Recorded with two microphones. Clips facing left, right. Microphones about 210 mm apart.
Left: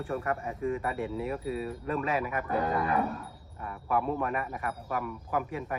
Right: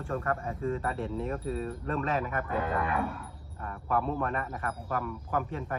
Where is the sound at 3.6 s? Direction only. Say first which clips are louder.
Even; 10° left (ahead or behind).